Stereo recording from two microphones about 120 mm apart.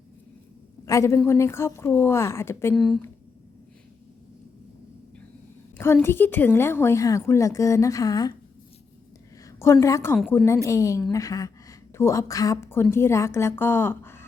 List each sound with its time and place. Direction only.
0.9 s a woman's voice: 25° left (ahead or behind)
2.7 s speech: centre (ahead or behind)
5.7 s a woman's voice: 20° left (ahead or behind)
9.5 s a sound: 25° left (ahead or behind)
9.8 s a woman's voice: 25° left (ahead or behind)